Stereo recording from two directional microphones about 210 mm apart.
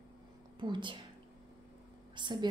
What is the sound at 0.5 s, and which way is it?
Speech, 20° right (ahead or behind).